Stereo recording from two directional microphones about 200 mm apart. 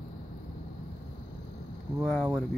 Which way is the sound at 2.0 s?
Centre (ahead or behind).